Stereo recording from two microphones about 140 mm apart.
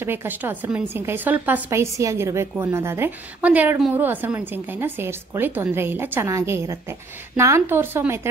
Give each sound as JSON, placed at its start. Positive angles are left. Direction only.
{"t": 0.0, "sound": "a woman's voice", "side_deg": -15}